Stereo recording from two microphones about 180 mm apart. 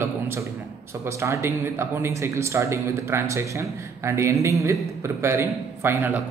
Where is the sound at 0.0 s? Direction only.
15° right (ahead or behind).